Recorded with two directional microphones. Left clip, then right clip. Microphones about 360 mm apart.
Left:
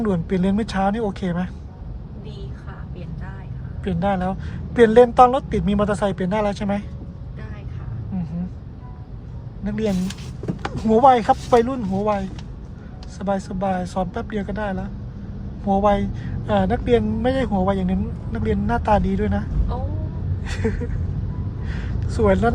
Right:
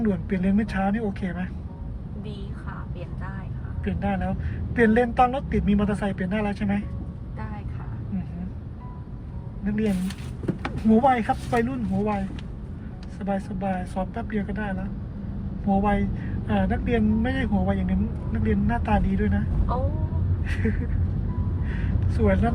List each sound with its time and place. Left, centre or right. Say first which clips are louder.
0.0 s speech: left 5 dB; centre
3.8 s speech: left 7 dB; centre
9.6 s speech: left 3 dB; centre
13.2 s speech: left 6 dB; centre
20.4 s speech: left 5 dB; centre